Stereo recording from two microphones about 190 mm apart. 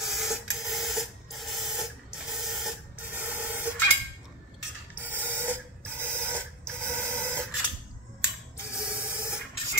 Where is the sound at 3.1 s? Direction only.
10° right (ahead or behind).